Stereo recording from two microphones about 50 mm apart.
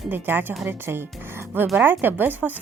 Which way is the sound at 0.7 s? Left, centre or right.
Right.